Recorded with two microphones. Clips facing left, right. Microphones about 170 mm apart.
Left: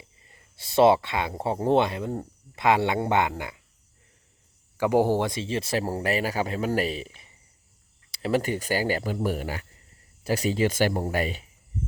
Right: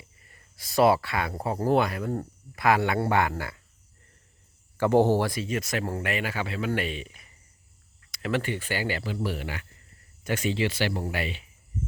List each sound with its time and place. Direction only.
0.2 s speech: 25° left (ahead or behind)
4.8 s speech: 10° left (ahead or behind); by 11.4 s 40° left (ahead or behind)